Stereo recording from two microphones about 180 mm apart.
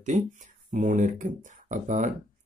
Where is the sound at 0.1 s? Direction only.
45° right (ahead or behind).